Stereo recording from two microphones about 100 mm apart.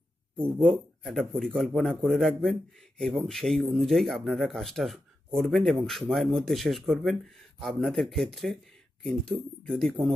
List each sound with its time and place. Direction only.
0.6 s speech: centre (ahead or behind)